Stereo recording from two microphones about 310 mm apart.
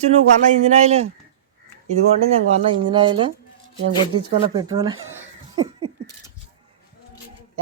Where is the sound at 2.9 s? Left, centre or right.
Centre.